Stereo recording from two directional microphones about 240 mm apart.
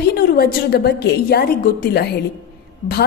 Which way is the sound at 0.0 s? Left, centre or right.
Left.